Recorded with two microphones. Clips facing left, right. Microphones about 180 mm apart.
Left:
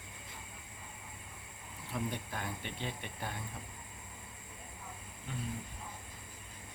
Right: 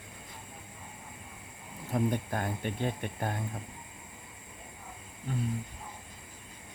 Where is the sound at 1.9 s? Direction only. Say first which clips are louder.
Right 9 dB; 50° right (ahead or behind).